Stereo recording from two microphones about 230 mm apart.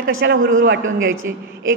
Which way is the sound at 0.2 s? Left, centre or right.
Right.